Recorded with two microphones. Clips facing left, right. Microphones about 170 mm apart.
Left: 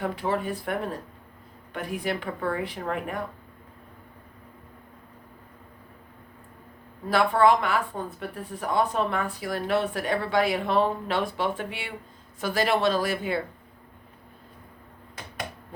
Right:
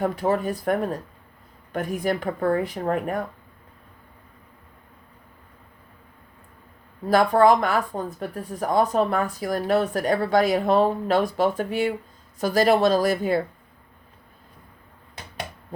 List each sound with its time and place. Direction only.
0.0 s speech: 45° right (ahead or behind)
7.1 s speech: 40° right (ahead or behind)